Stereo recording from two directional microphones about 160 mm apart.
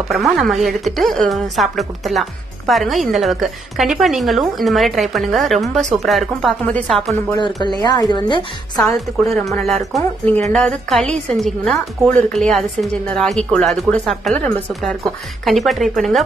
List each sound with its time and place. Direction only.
0.1 s a woman's voice: centre (ahead or behind)
7.8 s a woman's voice: 25° left (ahead or behind)
8.8 s a woman's voice: centre (ahead or behind)